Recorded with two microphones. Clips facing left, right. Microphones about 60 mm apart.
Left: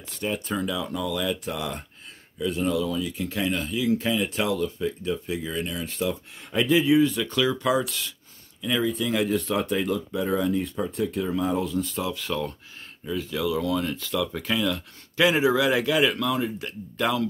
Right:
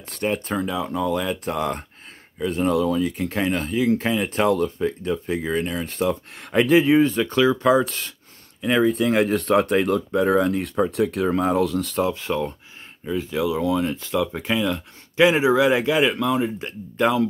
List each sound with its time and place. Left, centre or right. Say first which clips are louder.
0.1 s speech: right 4 dB; right
0.6 s speech: right 4 dB; right
8.5 s speech: right 6 dB; right
12.0 s speech: right 6 dB; right